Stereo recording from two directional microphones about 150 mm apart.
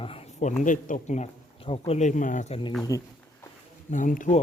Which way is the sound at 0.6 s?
60° left (ahead or behind).